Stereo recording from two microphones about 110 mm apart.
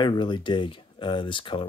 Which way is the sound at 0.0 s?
45° left (ahead or behind).